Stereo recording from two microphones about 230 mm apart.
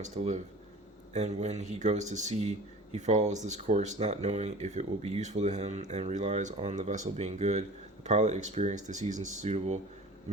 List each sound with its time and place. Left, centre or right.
0.0 s speech: right